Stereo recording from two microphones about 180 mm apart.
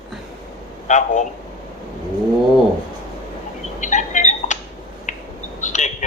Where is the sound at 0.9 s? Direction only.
40° left (ahead or behind).